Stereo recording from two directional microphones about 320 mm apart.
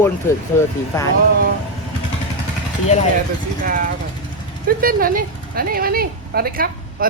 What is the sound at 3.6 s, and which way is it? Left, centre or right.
Speech, right.